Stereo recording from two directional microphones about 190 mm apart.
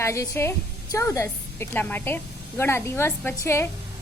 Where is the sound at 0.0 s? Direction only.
15° left (ahead or behind).